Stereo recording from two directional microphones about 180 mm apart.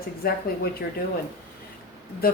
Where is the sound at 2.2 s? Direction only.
55° left (ahead or behind).